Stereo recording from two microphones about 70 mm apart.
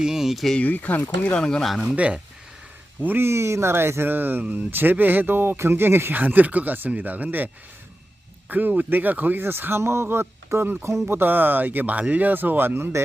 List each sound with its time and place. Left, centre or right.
0.0 s speech: centre
0.6 s speech: left
1.3 s speech: centre
1.8 s speech: centre
3.0 s speech: right